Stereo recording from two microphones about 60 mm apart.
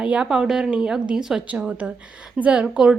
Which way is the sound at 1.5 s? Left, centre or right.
Right.